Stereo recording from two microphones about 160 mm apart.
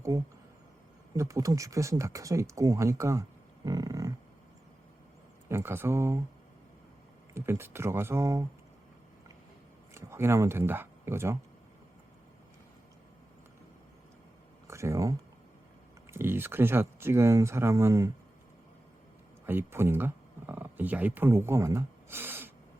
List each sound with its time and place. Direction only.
1.1 s speech: 20° right (ahead or behind)
5.5 s speech: 15° right (ahead or behind)
7.3 s speech: 15° right (ahead or behind)
9.9 s speech: 15° right (ahead or behind)
14.7 s speech: 20° right (ahead or behind)
16.1 s speech: 15° right (ahead or behind)
19.5 s speech: 15° right (ahead or behind)